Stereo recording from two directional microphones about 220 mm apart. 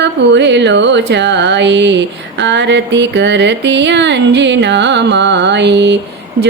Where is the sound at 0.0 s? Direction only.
55° right (ahead or behind).